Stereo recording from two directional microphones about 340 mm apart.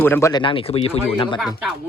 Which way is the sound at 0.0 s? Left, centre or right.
Centre.